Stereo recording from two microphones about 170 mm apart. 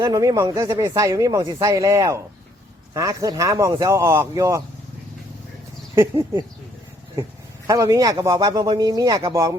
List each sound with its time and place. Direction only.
0.0 s speech: 20° right (ahead or behind)
5.9 s speech: 20° right (ahead or behind)
7.7 s speech: 20° right (ahead or behind)